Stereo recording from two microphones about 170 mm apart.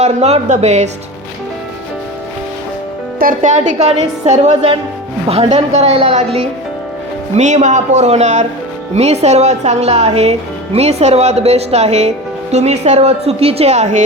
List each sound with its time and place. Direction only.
0.0 s speech: 40° right (ahead or behind)
3.2 s a woman's voice: 50° right (ahead or behind)